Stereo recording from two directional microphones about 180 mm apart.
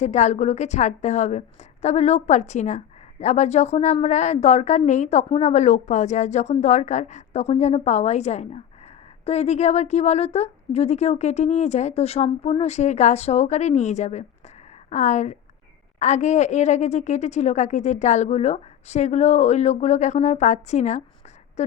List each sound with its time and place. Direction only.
0.0 s a woman's voice: 40° left (ahead or behind)